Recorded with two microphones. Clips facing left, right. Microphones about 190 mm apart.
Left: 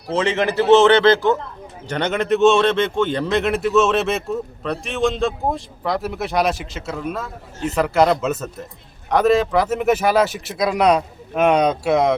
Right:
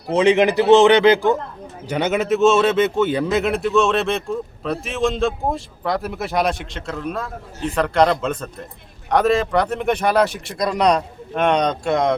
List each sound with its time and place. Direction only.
0.1 s a man's voice: 15° right (ahead or behind); by 12.1 s 5° left (ahead or behind)